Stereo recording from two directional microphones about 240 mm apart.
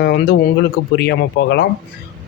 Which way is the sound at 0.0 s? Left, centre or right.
Left.